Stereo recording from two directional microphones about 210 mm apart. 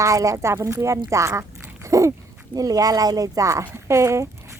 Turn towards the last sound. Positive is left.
turn(degrees=-15)  # may be behind; listen again after turning